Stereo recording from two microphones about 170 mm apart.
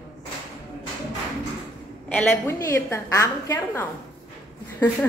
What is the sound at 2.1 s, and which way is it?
A woman's voice, 15° left (ahead or behind).